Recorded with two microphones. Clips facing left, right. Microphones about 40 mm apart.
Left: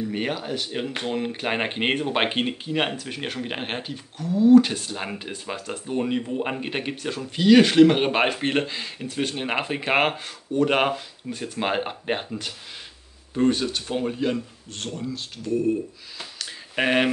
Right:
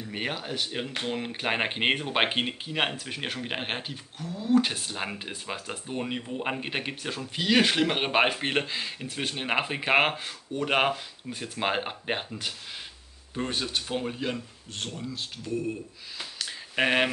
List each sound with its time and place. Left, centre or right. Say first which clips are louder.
0.1 s speech: left 5 dB; centre
13.3 s speech: left 8 dB; centre
16.2 s a sound: even; centre